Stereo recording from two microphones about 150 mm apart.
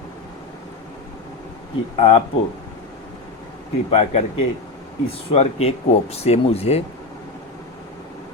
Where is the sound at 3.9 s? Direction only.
45° left (ahead or behind).